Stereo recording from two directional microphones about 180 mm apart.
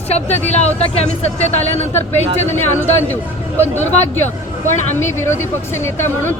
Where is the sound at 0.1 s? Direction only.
40° left (ahead or behind).